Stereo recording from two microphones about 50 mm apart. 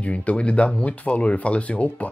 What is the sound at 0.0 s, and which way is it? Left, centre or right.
Speech, left.